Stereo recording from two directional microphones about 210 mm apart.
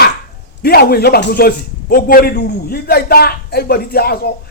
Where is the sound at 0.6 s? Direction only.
45° left (ahead or behind).